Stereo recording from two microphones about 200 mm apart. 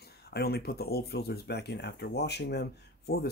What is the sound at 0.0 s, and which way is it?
Speech, 55° left (ahead or behind).